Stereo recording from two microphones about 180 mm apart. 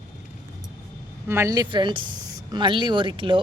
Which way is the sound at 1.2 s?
15° right (ahead or behind).